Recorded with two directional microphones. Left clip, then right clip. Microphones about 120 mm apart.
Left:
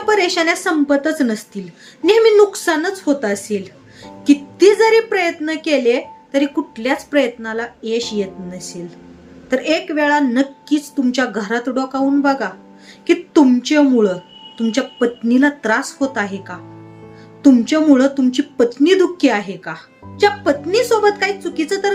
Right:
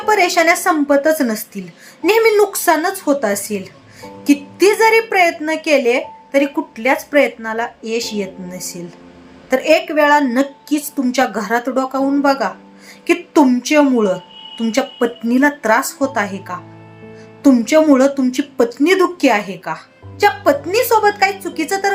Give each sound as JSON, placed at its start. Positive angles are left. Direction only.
{"t": 0.0, "sound": "speech", "side_deg": 15}